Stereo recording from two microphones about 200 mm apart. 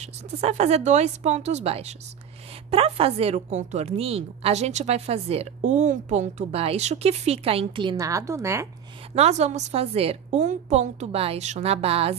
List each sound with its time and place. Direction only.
0.0 s a woman's voice: 35° right (ahead or behind); by 8.6 s 15° right (ahead or behind)
9.1 s a woman's voice: 35° right (ahead or behind)